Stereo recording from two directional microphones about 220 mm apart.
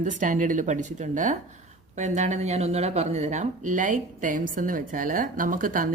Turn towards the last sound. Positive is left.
turn(degrees=-40)  # may be behind; listen again after turning